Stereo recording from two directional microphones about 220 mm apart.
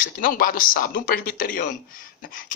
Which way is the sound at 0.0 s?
40° left (ahead or behind).